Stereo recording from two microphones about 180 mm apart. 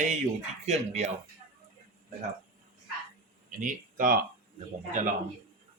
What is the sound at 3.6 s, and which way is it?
Speech, 50° right (ahead or behind).